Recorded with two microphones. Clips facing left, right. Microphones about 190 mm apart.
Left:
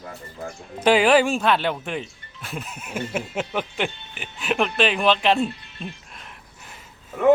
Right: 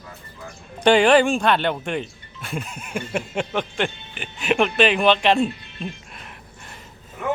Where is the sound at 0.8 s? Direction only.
5° left (ahead or behind).